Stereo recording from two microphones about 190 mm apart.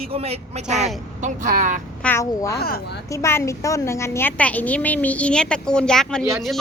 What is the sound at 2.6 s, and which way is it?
Speech, 55° left (ahead or behind).